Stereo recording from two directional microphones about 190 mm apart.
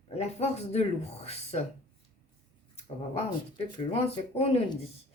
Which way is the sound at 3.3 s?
30° left (ahead or behind).